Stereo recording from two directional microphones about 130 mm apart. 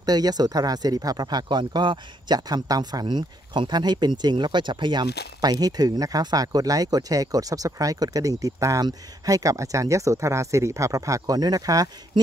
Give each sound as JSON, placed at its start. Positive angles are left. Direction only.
{"t": 0.0, "sound": "speech", "side_deg": -30}